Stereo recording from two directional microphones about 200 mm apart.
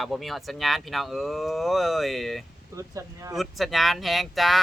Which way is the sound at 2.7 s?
15° right (ahead or behind).